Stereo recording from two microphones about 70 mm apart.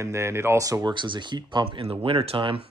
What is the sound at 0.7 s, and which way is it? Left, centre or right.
Speech, right.